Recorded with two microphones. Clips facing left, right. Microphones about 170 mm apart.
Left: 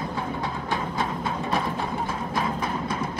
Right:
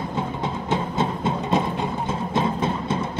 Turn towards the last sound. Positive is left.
turn(degrees=-25)  # may be behind; listen again after turning